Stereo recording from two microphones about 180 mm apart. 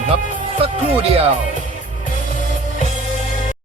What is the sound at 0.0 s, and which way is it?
Music, 45° left (ahead or behind).